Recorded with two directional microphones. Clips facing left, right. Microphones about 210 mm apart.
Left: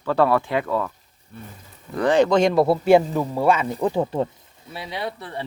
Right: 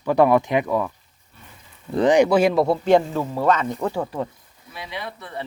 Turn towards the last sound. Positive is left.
turn(degrees=30)  # may be behind; listen again after turning